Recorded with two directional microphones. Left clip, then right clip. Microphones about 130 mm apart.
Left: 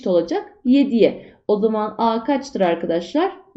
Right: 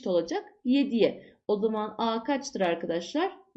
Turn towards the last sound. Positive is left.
turn(degrees=-20)  # may be behind; listen again after turning